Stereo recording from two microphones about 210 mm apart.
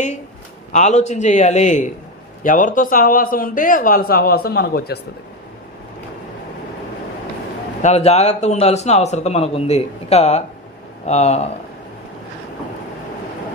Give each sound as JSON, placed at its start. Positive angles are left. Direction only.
{"t": 0.7, "sound": "a man's voice", "side_deg": 35}
{"t": 7.8, "sound": "a man's voice", "side_deg": 30}